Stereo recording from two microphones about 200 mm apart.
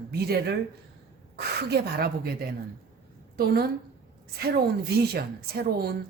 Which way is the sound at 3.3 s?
50° right (ahead or behind).